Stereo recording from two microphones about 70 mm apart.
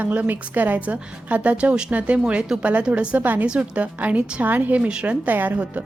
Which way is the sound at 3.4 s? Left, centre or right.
Centre.